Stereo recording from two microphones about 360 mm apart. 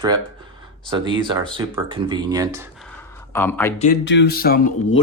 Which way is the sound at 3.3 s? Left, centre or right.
Centre.